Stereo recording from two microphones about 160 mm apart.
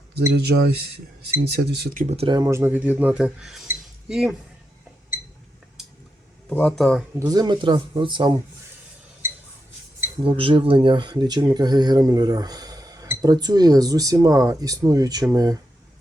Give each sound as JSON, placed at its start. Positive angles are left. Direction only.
{"t": 0.1, "sound": "speech", "side_deg": -90}
{"t": 2.0, "sound": "speech", "side_deg": -40}
{"t": 2.3, "sound": "speech", "side_deg": -20}
{"t": 3.7, "sound": "cutlery", "side_deg": -5}
{"t": 6.5, "sound": "speech", "side_deg": 5}
{"t": 7.2, "sound": "speech", "side_deg": -25}
{"t": 10.2, "sound": "speech", "side_deg": -35}